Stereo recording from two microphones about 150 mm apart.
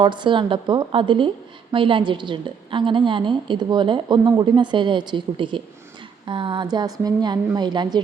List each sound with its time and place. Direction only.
0.0 s a woman's voice: 30° right (ahead or behind)